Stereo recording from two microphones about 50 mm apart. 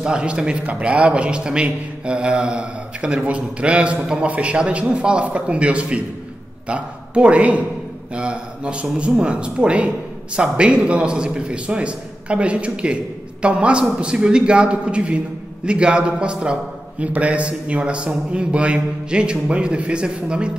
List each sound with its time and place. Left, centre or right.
0.0 s a man's voice: centre